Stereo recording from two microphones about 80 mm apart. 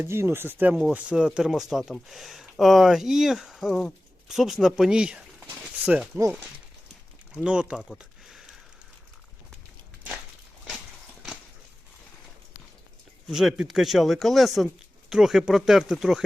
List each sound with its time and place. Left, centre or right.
0.0 s speech: right
0.7 s speech: centre
7.3 s speech: centre
13.2 s speech: centre